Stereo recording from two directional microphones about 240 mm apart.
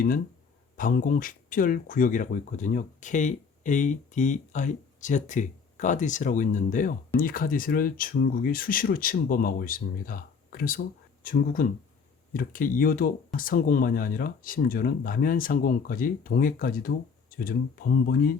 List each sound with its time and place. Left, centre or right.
0.8 s speech: left